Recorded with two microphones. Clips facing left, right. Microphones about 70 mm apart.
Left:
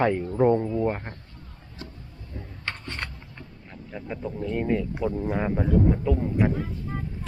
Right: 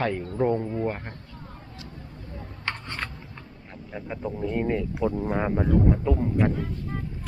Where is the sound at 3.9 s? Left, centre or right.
Centre.